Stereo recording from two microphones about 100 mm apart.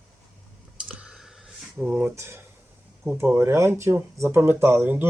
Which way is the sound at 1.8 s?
20° right (ahead or behind).